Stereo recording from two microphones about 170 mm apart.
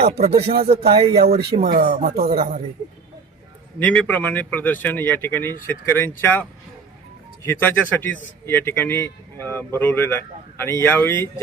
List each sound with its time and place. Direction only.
0.1 s speech: 35° right (ahead or behind)
1.2 s speech: 65° right (ahead or behind)
3.8 s speech: 10° left (ahead or behind)
7.4 s speech: 15° left (ahead or behind)